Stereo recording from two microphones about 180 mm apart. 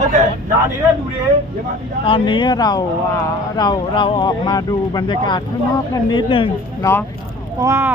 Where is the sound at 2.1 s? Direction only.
30° left (ahead or behind).